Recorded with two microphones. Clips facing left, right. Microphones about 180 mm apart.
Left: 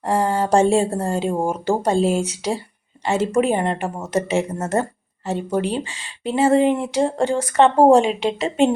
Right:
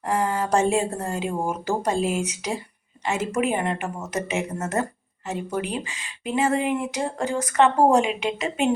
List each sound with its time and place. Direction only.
0.0 s speech: 30° left (ahead or behind)